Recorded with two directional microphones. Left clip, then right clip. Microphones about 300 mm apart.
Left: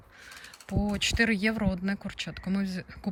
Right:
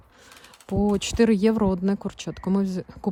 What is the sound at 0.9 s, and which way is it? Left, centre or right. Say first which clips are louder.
Speech: right 3 dB; centre.